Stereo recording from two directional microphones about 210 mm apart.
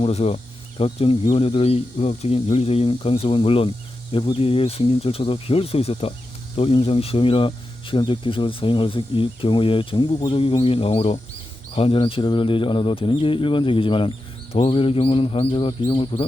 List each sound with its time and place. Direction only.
0.0 s speech: 30° left (ahead or behind)